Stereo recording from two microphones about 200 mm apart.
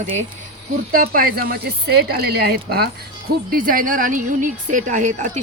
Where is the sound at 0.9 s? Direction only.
45° right (ahead or behind).